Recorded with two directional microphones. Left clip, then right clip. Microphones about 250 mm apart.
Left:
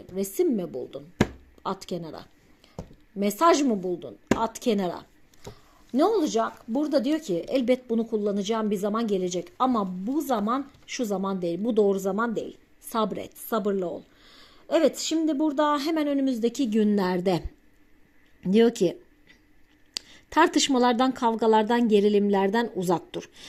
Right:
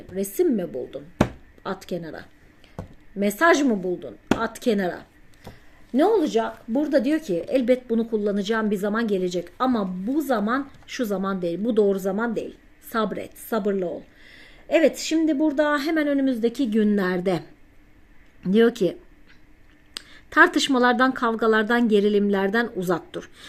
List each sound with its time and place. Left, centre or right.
0.2 s a woman's voice: centre
18.4 s a woman's voice: centre